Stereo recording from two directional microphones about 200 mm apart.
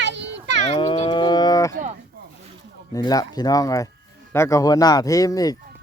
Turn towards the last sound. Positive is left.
turn(degrees=20)  # may be behind; listen again after turning